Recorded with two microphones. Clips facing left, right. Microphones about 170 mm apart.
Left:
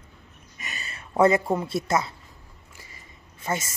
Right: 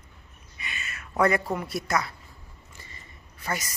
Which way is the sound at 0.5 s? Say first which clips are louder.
Even; 40° left (ahead or behind).